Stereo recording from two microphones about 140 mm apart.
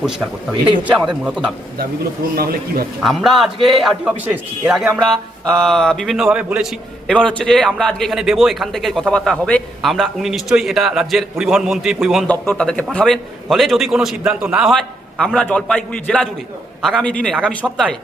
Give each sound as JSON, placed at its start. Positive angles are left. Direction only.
{"t": 0.0, "sound": "speech", "side_deg": -5}
{"t": 2.3, "sound": "a man's voice", "side_deg": -90}
{"t": 3.0, "sound": "a man's voice", "side_deg": 0}
{"t": 7.1, "sound": "a man's voice", "side_deg": 10}
{"t": 12.3, "sound": "a man's voice", "side_deg": 10}